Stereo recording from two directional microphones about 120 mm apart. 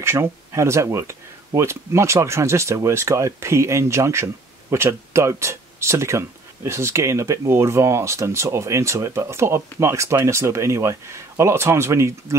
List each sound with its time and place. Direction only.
0.0 s speech: 20° right (ahead or behind)